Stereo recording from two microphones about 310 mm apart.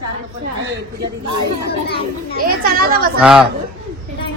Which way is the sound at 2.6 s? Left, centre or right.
Right.